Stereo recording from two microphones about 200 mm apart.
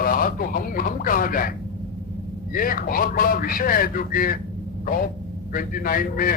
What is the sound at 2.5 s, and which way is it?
Speech, 45° left (ahead or behind).